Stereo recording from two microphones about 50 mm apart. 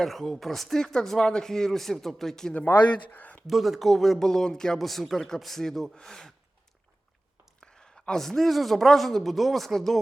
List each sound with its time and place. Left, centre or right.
0.0 s speech: centre
3.1 s a sound: left
3.4 s speech: centre
4.9 s speech: centre
7.6 s speech: centre